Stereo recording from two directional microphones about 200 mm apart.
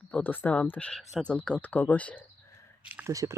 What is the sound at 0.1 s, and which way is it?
Speech, 10° left (ahead or behind).